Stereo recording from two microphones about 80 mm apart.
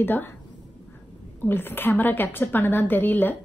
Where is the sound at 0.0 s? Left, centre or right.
Left.